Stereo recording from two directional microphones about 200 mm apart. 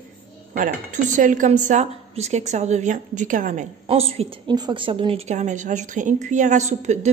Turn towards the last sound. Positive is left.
turn(degrees=-35)  # may be behind; listen again after turning